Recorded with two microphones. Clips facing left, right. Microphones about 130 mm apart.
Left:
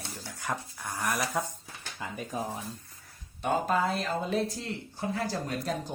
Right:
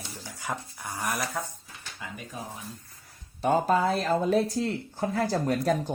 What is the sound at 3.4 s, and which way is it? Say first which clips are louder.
Speech: right 4 dB; 40° right (ahead or behind).